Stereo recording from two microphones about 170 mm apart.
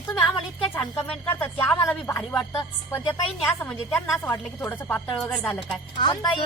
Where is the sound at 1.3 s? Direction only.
15° left (ahead or behind).